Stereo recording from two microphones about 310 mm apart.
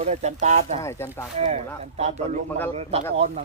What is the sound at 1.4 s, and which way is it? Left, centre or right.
Speech, right.